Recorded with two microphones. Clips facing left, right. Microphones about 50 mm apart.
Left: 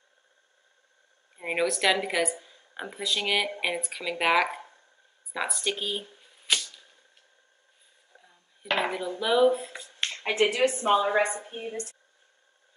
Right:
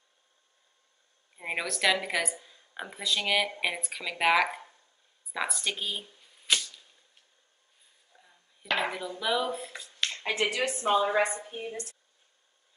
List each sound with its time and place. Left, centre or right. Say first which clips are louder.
1.3 s a woman's voice: left 6 dB; centre
8.6 s dishes: left 2 dB; left
9.2 s speech: left 4 dB; centre
9.9 s a woman's voice: left 4 dB; left